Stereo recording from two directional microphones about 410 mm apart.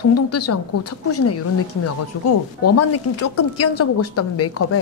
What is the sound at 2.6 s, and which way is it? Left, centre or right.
Speech, left.